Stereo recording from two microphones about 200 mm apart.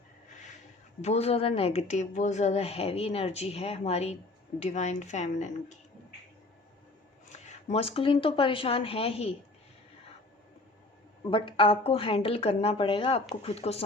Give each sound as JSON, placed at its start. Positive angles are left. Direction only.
{"t": 1.0, "sound": "speech", "side_deg": 30}
{"t": 7.3, "sound": "speech", "side_deg": 30}
{"t": 11.3, "sound": "speech", "side_deg": 25}